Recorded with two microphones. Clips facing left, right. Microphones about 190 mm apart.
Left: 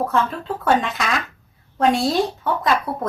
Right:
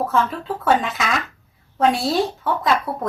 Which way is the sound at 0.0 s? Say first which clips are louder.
Even; centre (ahead or behind).